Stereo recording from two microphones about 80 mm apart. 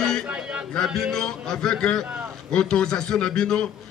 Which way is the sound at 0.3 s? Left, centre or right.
Centre.